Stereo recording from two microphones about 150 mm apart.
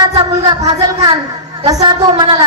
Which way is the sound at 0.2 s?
30° right (ahead or behind).